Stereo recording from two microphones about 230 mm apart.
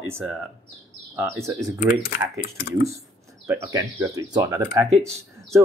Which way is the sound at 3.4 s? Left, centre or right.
Centre.